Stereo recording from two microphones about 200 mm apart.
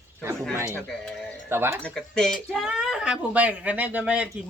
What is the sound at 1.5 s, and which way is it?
Speech, 10° right (ahead or behind).